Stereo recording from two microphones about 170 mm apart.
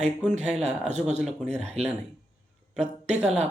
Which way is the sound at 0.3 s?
40° right (ahead or behind).